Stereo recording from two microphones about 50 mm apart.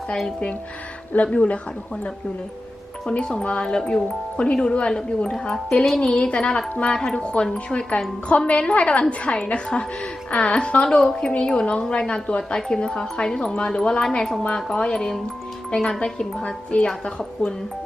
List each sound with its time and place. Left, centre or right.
1.1 s speech: left
3.1 s a woman's voice: centre
14.4 s a woman's voice: left